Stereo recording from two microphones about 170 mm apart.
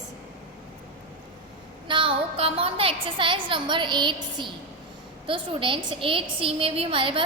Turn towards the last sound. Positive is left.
turn(degrees=-30)  # may be behind; listen again after turning